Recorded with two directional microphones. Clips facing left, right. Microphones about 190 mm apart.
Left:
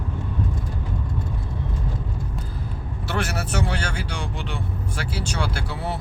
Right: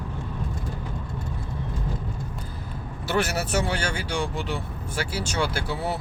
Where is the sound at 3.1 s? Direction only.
5° right (ahead or behind).